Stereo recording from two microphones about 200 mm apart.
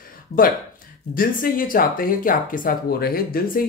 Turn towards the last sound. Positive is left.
turn(degrees=45)  # may be behind; listen again after turning